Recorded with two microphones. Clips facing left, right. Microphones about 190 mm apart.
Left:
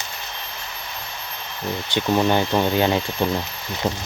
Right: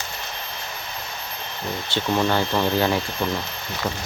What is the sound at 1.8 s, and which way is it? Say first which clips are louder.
Speech: left 3 dB; 15° left (ahead or behind).